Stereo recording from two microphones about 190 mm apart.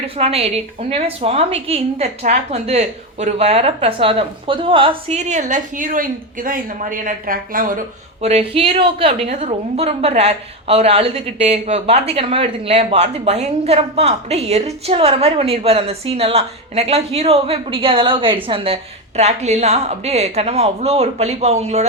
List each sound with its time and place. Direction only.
0.0 s a woman's voice: 30° right (ahead or behind); by 7.8 s 45° right (ahead or behind)
8.2 s a woman's voice: 35° right (ahead or behind)